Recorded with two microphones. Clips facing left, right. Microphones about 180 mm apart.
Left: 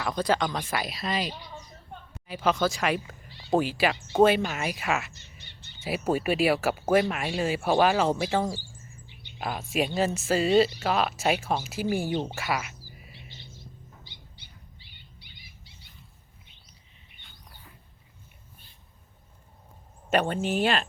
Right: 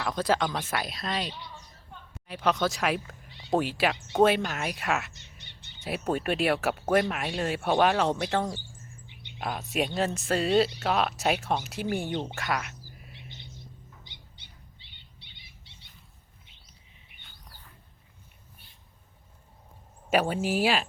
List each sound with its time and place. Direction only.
0.0 s speech: centre (ahead or behind)
5.4 s a sound: 20° right (ahead or behind)
5.8 s speech: 5° left (ahead or behind)
12.4 s bird: 5° left (ahead or behind)
14.0 s bird: 20° right (ahead or behind)
14.8 s a sound: 25° right (ahead or behind)
20.1 s speech: 5° right (ahead or behind)